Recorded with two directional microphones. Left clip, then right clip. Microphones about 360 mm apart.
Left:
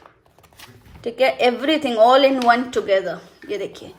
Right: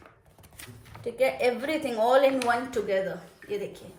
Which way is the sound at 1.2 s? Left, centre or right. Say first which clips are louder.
Left 8 dB; left.